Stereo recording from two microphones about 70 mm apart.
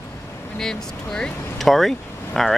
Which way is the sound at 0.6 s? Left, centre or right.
Centre.